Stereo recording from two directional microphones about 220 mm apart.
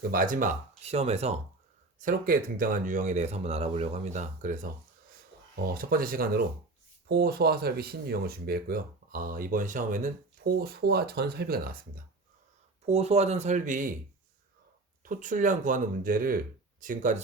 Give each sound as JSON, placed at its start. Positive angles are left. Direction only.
{"t": 0.1, "sound": "speech", "side_deg": -40}
{"t": 2.0, "sound": "speech", "side_deg": -40}
{"t": 5.7, "sound": "speech", "side_deg": -40}
{"t": 12.9, "sound": "speech", "side_deg": -30}
{"t": 15.0, "sound": "speech", "side_deg": -35}